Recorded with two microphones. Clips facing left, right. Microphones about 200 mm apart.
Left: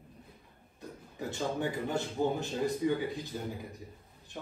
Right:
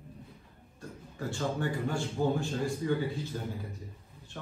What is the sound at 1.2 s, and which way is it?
A man's voice, 20° left (ahead or behind).